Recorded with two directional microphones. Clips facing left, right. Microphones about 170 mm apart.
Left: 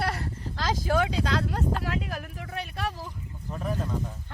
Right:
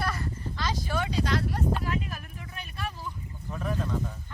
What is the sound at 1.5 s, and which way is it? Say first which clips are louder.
Speech: even; 80° left.